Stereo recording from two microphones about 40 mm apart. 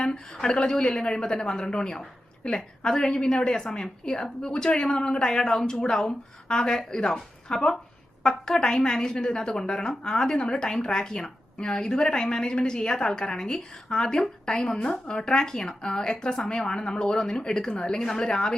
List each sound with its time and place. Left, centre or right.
0.0 s a woman's voice: centre